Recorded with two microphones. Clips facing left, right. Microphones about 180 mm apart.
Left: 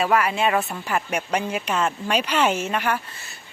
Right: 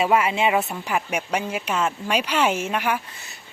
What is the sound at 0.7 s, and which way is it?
A woman's voice, 5° right (ahead or behind).